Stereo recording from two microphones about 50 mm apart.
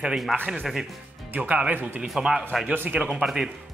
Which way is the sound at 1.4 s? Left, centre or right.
Right.